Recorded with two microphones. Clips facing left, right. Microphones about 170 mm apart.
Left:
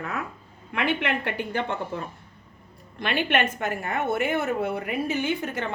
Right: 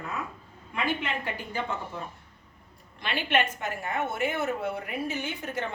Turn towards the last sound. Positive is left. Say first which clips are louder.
# left 6 dB
turn(degrees=75)  # may be behind; listen again after turning